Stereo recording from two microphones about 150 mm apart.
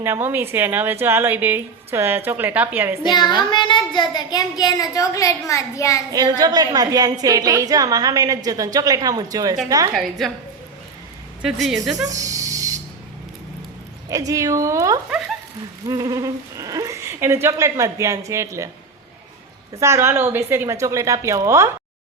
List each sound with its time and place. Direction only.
0.0 s a woman's voice: 15° right (ahead or behind)
3.0 s child singing: 30° left (ahead or behind)
6.1 s a woman's voice: 25° right (ahead or behind)
9.9 s a woman's voice: centre (ahead or behind)
11.4 s a woman's voice: centre (ahead or behind)
12.0 s a sound: 20° right (ahead or behind)
14.1 s a woman's voice: 25° right (ahead or behind)
19.7 s a woman's voice: 20° right (ahead or behind)